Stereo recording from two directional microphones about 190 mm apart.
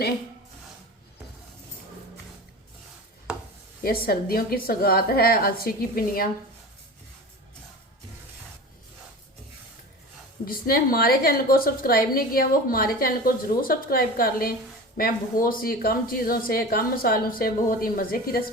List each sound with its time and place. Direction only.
3.8 s a woman's voice: 50° left (ahead or behind)
10.4 s a woman's voice: 50° left (ahead or behind)